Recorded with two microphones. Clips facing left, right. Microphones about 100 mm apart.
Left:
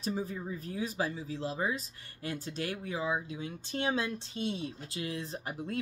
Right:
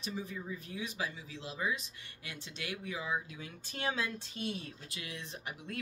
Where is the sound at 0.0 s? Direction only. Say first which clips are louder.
Left 6 dB; 40° left (ahead or behind).